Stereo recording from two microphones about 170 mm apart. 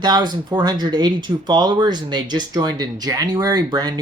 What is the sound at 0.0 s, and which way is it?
Speech, 25° right (ahead or behind).